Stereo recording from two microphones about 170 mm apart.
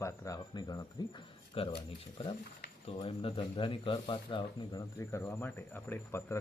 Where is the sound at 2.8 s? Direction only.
30° left (ahead or behind).